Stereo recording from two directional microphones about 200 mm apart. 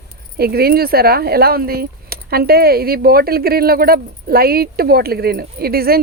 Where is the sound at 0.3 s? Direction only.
50° right (ahead or behind).